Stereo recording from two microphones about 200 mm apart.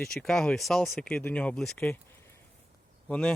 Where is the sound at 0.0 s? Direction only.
5° left (ahead or behind).